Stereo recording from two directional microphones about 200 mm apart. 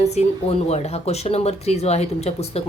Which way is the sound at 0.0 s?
35° left (ahead or behind).